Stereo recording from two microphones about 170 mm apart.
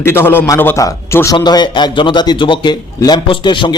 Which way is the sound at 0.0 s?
15° left (ahead or behind).